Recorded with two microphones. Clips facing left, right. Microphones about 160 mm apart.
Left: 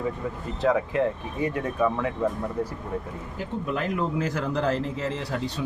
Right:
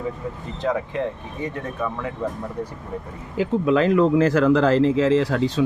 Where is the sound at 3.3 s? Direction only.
90° right.